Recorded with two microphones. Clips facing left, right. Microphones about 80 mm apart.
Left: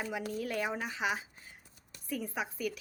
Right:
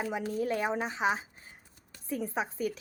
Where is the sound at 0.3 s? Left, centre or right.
Right.